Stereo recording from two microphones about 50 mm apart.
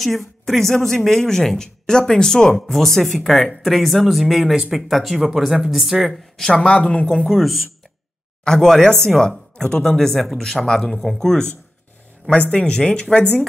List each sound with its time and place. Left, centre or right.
0.0 s a woman's voice: centre
2.6 s speech: centre
6.5 s speech: centre
7.2 s a woman's voice: centre
12.3 s speech: left